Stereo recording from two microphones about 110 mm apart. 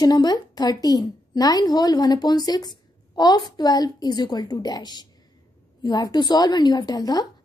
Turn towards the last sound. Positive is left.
turn(degrees=35)  # may be behind; listen again after turning